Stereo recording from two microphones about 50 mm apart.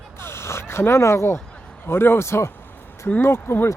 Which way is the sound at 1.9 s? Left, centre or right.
Left.